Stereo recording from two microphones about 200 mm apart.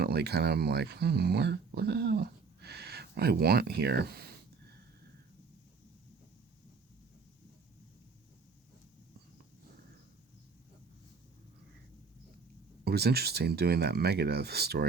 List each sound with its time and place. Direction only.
0.0 s speech: 55° right (ahead or behind)
12.8 s speech: 50° right (ahead or behind)